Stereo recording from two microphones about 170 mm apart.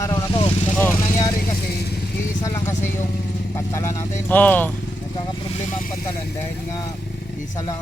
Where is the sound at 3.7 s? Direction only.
15° left (ahead or behind).